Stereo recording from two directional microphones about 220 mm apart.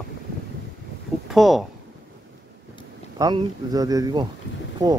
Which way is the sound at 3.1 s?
15° right (ahead or behind).